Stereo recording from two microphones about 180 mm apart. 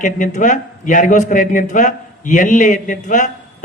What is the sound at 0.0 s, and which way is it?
A man's voice, 45° left (ahead or behind).